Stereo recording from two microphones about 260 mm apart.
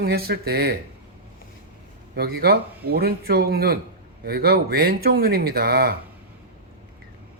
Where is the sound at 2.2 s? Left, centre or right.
Right.